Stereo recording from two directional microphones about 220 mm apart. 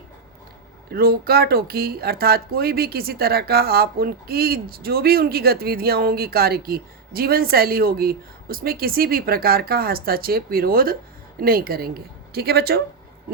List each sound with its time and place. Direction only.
0.9 s speech: 45° right (ahead or behind)